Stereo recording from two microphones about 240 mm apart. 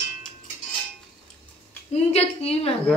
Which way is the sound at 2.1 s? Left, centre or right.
Left.